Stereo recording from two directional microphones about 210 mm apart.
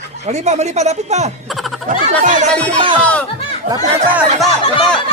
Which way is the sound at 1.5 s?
Centre (ahead or behind).